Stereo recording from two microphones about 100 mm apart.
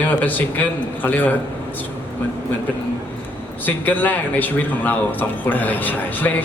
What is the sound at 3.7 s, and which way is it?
A man's voice, 20° left (ahead or behind).